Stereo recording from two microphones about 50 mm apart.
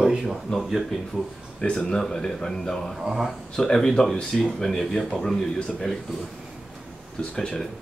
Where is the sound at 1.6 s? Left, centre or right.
Centre.